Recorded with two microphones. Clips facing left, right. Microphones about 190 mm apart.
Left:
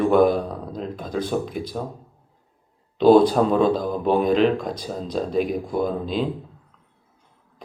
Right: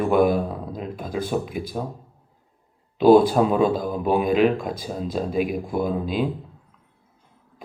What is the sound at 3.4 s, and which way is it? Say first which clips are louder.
Speech: left 1 dB; 5° right (ahead or behind).